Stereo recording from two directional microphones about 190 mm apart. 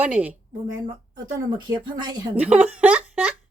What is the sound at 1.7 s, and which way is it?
Speech, 20° right (ahead or behind).